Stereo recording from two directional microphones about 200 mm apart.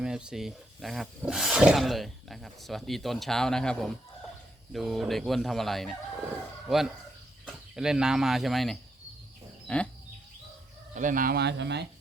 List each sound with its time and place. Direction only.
0.0 s speech: 5° right (ahead or behind)
9.6 s a sound: 5° left (ahead or behind)
10.9 s speech: 40° right (ahead or behind); by 11.9 s 60° right (ahead or behind)